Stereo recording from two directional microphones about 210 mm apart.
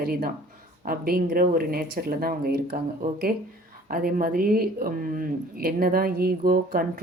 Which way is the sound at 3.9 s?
45° right (ahead or behind).